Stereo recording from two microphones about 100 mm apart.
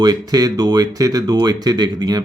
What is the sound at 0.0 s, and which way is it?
Speech, 40° right (ahead or behind).